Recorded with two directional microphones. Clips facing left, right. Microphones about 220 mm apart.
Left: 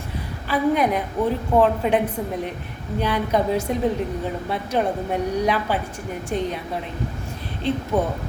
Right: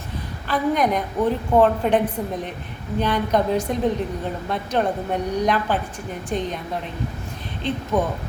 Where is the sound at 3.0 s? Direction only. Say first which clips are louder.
Even; 10° left (ahead or behind).